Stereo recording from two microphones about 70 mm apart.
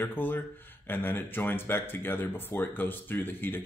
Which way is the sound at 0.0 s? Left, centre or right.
Left.